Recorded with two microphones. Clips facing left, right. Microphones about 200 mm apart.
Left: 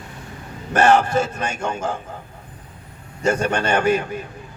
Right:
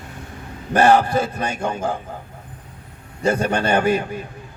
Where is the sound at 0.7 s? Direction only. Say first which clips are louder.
Right 1 dB; 35° right (ahead or behind).